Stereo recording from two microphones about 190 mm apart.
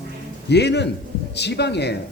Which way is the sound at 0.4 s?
60° left (ahead or behind).